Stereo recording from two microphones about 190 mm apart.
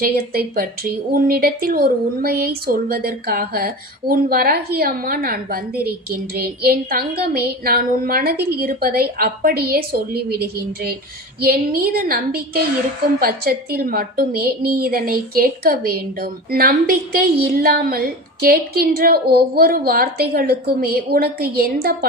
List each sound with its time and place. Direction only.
0.0 s a woman's voice: 50° right (ahead or behind)